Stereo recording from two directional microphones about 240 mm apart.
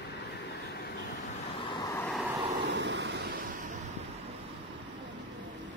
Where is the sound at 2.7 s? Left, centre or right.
Right.